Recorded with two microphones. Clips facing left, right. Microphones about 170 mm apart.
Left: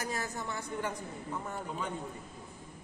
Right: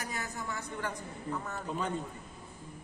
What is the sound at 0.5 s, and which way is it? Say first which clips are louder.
Speech: left 1 dB; 25° left (ahead or behind).